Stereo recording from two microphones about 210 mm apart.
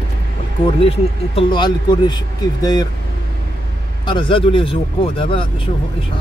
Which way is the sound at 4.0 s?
25° left (ahead or behind).